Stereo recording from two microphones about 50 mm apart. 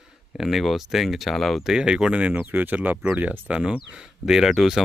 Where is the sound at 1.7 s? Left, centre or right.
Centre.